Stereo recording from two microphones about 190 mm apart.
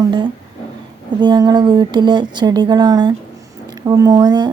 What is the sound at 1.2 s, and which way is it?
Speech, 20° right (ahead or behind).